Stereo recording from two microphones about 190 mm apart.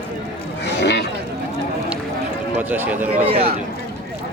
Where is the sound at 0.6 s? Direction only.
65° left (ahead or behind).